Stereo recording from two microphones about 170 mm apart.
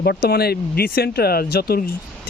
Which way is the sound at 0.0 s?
70° left (ahead or behind).